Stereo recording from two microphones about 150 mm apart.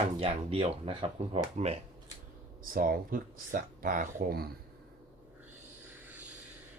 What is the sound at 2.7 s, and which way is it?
Speech, 70° right (ahead or behind).